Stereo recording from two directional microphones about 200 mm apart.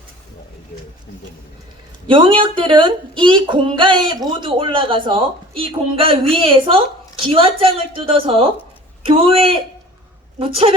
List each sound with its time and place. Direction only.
2.0 s speech: 25° right (ahead or behind)